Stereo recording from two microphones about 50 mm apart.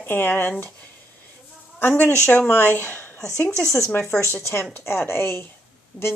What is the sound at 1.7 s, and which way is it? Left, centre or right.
A woman's voice, left.